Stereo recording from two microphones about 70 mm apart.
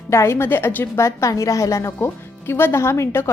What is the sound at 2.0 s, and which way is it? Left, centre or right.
A woman's voice, left.